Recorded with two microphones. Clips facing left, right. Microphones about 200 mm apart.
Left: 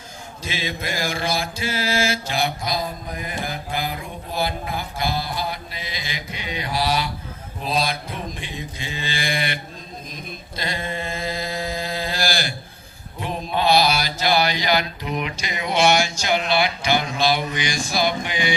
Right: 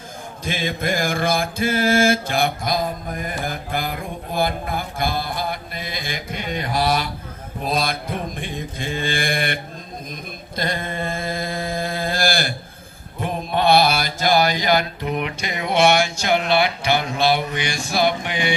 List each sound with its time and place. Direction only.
0.4 s mantra: 50° right (ahead or behind)
10.6 s mantra: 50° right (ahead or behind)